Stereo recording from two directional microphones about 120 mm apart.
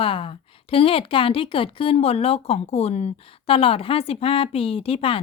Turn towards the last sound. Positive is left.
turn(degrees=50)  # may be behind; listen again after turning